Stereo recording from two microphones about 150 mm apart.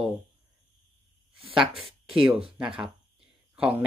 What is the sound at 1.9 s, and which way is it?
Speech, 40° right (ahead or behind).